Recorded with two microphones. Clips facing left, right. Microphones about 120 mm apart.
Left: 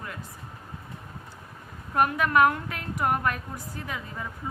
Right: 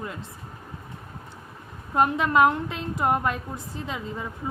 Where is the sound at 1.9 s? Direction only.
20° right (ahead or behind).